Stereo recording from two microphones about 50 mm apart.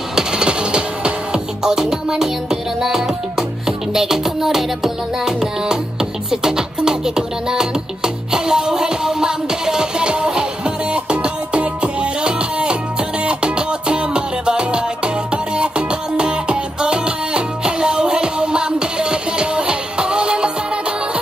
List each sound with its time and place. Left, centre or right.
0.1 s music: centre